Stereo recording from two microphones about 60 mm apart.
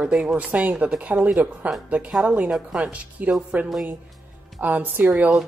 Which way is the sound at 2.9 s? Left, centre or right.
Right.